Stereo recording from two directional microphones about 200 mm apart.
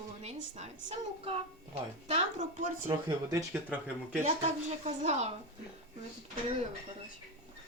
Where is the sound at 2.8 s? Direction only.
15° right (ahead or behind).